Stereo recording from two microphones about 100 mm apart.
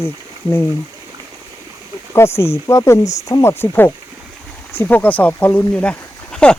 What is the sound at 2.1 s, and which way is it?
Speech, 25° left (ahead or behind).